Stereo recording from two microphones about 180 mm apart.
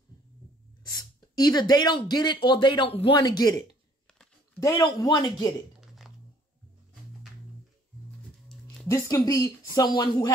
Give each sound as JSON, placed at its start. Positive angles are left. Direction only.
{"t": 0.8, "sound": "speech", "side_deg": 20}
{"t": 5.8, "sound": "a sound", "side_deg": 0}
{"t": 8.9, "sound": "speech", "side_deg": 20}